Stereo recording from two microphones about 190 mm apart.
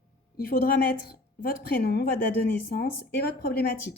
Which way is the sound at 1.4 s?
55° left (ahead or behind).